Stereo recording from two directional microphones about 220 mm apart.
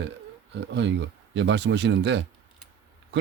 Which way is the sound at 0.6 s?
55° right (ahead or behind).